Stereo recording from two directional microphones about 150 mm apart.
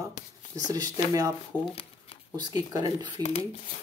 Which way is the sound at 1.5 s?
10° left (ahead or behind).